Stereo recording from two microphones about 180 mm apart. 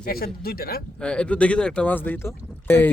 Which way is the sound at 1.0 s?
5° left (ahead or behind).